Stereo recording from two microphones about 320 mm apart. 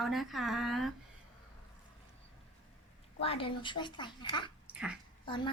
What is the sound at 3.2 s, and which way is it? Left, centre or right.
A woman's voice, centre.